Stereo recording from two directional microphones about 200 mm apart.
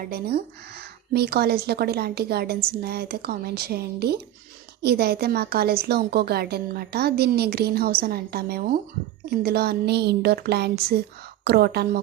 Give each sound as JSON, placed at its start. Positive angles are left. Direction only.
{"t": 0.0, "sound": "speech", "side_deg": -50}